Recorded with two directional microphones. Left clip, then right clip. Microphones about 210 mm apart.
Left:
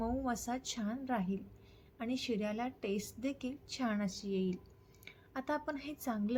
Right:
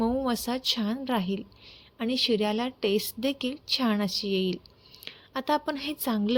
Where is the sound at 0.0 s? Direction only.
35° right (ahead or behind).